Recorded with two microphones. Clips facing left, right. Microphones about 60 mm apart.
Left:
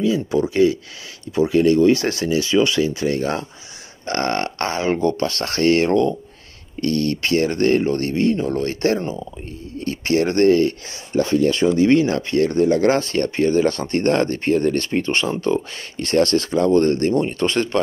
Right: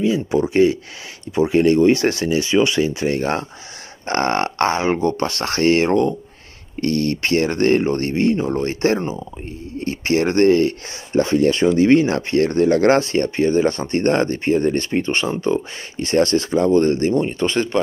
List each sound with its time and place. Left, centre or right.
0.0 s speech: right
1.3 s speech: right
13.0 s speech: centre